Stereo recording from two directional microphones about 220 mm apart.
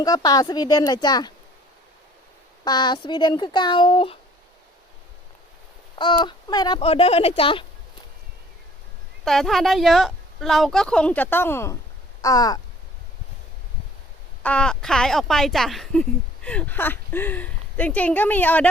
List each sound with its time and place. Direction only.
0.0 s speech: 15° left (ahead or behind)
2.6 s speech: 20° left (ahead or behind)
6.0 s speech: 20° left (ahead or behind)
9.2 s speech: centre (ahead or behind); by 12.5 s 15° left (ahead or behind)
14.4 s speech: 5° left (ahead or behind)